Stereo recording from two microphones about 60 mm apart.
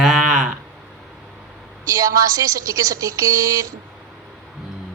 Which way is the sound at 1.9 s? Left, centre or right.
Right.